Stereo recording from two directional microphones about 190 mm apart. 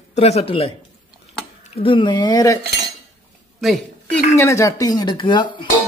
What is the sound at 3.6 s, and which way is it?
Speech, 5° left (ahead or behind).